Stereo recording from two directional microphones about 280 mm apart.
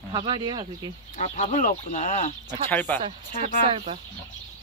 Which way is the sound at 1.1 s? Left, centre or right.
Left.